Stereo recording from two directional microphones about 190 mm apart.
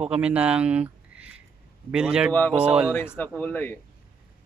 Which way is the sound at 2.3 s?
10° left (ahead or behind).